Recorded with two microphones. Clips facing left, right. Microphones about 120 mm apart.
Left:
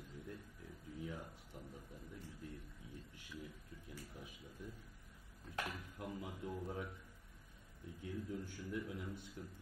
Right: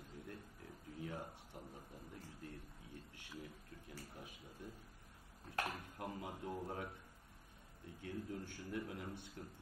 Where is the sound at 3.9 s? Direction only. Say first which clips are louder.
Even; 45° right (ahead or behind).